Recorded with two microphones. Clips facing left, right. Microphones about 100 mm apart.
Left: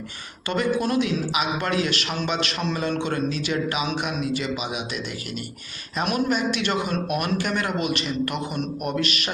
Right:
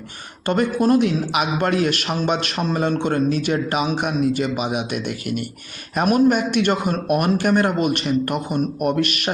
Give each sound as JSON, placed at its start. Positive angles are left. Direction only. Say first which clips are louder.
{"t": 0.4, "sound": "a man's voice", "louder": "right 5 dB", "side_deg": -50}